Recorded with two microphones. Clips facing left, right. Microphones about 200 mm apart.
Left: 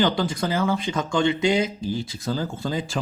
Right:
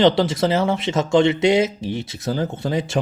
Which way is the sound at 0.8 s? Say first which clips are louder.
Right 5 dB; 80° right.